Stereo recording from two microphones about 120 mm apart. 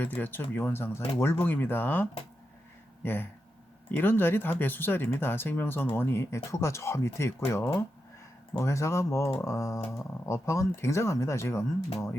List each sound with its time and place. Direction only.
0.0 s speech: 15° left (ahead or behind)